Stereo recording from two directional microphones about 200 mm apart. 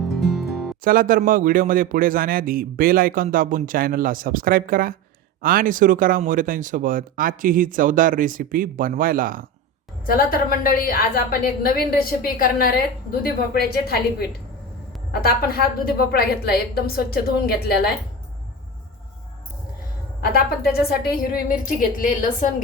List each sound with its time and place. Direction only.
0.1 s music: centre (ahead or behind)
0.9 s a man's voice: 45° right (ahead or behind)
10.1 s a woman's voice: 45° left (ahead or behind)
20.3 s a woman's voice: 50° left (ahead or behind)